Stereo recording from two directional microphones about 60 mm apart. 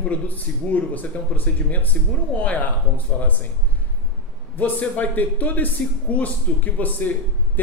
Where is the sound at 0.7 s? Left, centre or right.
Left.